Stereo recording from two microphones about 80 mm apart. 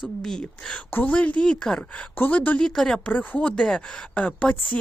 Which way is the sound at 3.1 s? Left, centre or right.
Centre.